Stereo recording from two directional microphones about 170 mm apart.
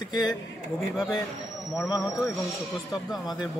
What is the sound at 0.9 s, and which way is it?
Speech, 5° right (ahead or behind).